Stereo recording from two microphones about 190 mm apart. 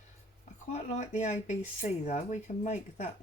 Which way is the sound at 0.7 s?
35° left (ahead or behind).